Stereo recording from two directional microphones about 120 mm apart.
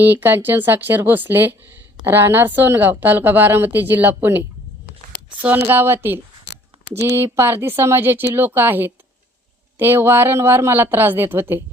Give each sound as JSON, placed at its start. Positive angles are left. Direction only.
{"t": 0.0, "sound": "speech", "side_deg": -15}